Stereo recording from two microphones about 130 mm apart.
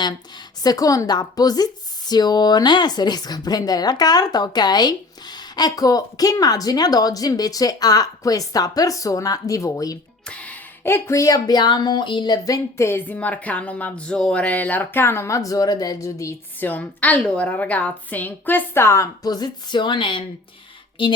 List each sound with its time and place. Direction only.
0.0 s speech: 30° left (ahead or behind)
10.2 s speech: 10° left (ahead or behind); by 16.3 s 25° left (ahead or behind)
16.6 s a woman's voice: 15° left (ahead or behind); by 20.2 s 40° left (ahead or behind)